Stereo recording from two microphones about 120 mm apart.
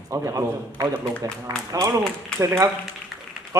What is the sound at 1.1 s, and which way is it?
Speech, 10° left (ahead or behind).